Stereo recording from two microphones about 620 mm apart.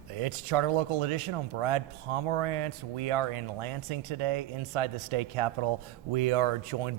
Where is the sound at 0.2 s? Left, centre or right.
Right.